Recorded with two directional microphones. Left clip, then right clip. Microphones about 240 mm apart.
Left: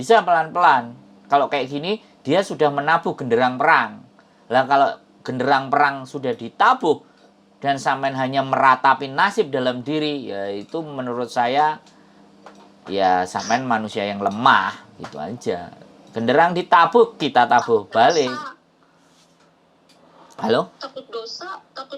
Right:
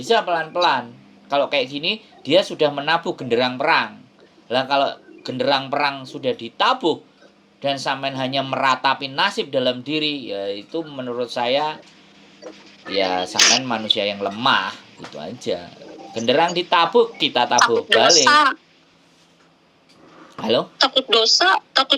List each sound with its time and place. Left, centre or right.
0.0 s speech: left
12.9 s speech: centre
20.4 s speech: centre